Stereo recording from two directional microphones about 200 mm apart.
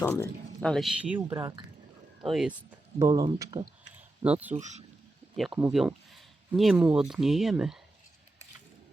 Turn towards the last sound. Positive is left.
turn(degrees=0)  # may be behind; listen again after turning